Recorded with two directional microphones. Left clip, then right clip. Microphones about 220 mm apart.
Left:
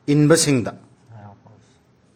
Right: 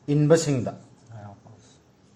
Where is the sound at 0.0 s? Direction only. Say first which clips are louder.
Left 4 dB; 55° left (ahead or behind).